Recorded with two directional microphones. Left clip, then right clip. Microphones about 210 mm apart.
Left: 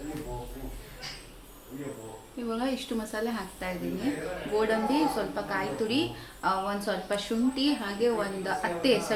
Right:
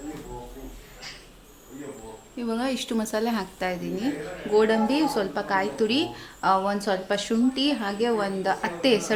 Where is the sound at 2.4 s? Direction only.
55° right (ahead or behind).